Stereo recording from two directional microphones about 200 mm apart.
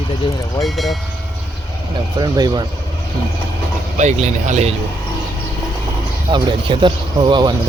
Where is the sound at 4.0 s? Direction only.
35° right (ahead or behind).